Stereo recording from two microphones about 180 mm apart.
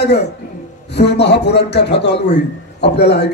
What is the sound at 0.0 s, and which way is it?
A man's voice, 70° left (ahead or behind).